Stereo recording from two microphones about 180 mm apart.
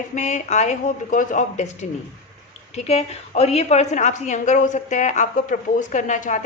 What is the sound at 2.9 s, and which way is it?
A woman's voice, 35° left (ahead or behind).